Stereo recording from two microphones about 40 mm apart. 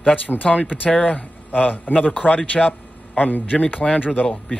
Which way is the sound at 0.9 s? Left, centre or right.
Left.